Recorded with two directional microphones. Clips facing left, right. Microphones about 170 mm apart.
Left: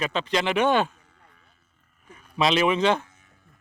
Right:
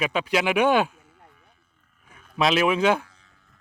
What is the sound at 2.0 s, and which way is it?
Speech, centre (ahead or behind).